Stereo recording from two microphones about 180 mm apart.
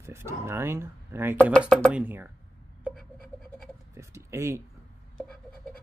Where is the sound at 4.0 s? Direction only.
15° right (ahead or behind).